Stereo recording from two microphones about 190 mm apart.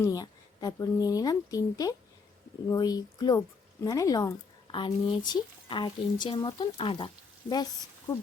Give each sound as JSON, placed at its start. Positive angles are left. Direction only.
{"t": 0.0, "sound": "speech", "side_deg": 20}